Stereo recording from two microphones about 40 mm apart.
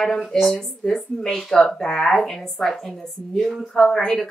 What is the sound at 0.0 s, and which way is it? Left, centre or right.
Speech, centre.